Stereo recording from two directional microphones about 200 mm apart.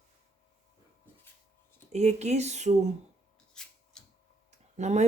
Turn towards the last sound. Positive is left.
turn(degrees=-35)  # may be behind; listen again after turning